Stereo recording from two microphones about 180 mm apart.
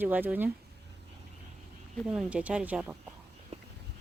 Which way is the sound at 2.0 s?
5° right (ahead or behind).